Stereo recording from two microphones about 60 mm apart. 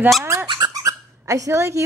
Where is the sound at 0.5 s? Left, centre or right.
Right.